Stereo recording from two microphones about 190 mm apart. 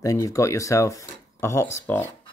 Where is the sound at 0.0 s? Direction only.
15° left (ahead or behind).